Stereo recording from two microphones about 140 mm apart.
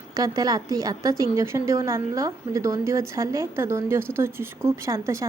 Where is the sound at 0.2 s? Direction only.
25° right (ahead or behind).